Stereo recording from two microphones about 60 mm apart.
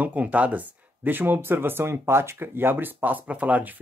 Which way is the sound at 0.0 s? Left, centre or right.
Right.